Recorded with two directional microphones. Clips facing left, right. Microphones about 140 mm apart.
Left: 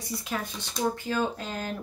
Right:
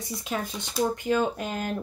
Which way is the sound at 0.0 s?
20° right (ahead or behind).